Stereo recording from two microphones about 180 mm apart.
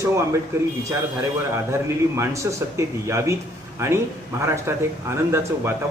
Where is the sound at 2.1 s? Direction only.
15° right (ahead or behind).